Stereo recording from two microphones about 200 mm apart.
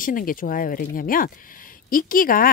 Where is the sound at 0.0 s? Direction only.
45° left (ahead or behind).